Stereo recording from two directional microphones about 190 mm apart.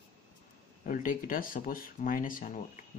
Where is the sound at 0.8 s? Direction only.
45° left (ahead or behind).